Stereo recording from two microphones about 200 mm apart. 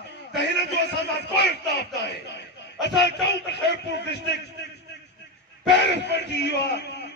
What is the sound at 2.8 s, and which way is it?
A man's voice, 60° left (ahead or behind).